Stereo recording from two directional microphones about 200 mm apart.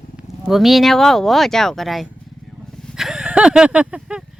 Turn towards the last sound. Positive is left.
turn(degrees=-5)  # may be behind; listen again after turning